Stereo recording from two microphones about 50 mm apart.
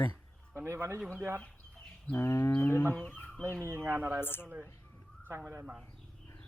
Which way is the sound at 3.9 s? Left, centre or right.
Right.